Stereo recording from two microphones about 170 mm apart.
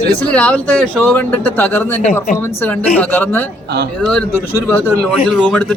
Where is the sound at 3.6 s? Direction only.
75° right (ahead or behind).